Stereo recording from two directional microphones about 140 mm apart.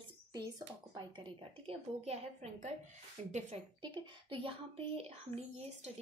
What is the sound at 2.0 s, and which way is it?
A woman's voice, 50° right (ahead or behind).